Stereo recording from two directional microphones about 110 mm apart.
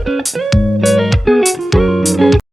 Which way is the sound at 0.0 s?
Centre (ahead or behind).